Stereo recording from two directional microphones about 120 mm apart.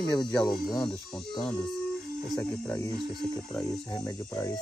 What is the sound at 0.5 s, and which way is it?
Speech, centre (ahead or behind).